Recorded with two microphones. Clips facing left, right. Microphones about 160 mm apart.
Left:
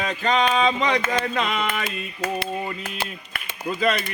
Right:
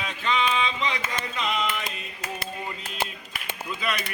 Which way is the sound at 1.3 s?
60° left (ahead or behind).